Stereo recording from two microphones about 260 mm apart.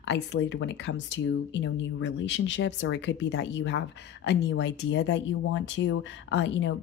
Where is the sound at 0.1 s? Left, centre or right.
Left.